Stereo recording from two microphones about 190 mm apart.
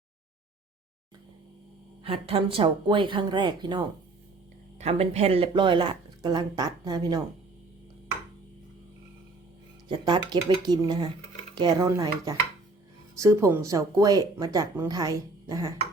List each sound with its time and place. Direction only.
2.0 s speech: 30° right (ahead or behind)
4.8 s speech: 35° right (ahead or behind)
9.9 s speech: 25° right (ahead or behind)